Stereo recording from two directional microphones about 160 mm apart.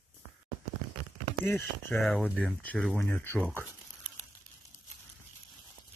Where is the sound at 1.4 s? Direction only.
10° left (ahead or behind).